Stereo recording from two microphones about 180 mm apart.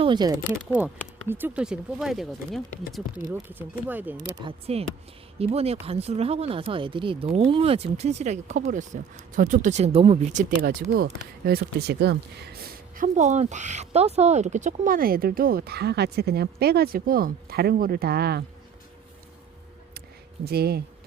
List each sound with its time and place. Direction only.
0.0 s speech: 25° right (ahead or behind)
0.8 s speech: 10° right (ahead or behind)
4.4 s speech: 35° right (ahead or behind)
10.6 s speech: 55° right (ahead or behind)
13.1 s speech: 40° right (ahead or behind); by 18.4 s 60° right (ahead or behind)
20.4 s speech: 60° right (ahead or behind)